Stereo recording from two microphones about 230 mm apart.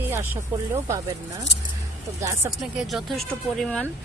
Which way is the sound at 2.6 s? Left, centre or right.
Centre.